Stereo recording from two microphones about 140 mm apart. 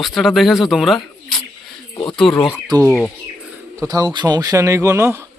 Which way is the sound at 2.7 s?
30° right (ahead or behind).